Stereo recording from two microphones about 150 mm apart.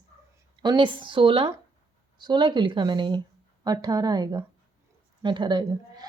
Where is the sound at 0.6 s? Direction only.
30° right (ahead or behind).